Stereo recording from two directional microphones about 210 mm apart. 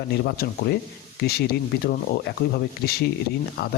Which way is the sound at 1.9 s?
45° left (ahead or behind).